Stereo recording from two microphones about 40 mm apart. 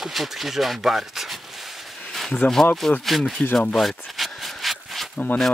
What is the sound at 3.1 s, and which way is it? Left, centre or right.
Speech, centre.